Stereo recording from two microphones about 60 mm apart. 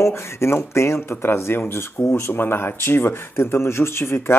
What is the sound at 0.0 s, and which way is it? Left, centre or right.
Speech, left.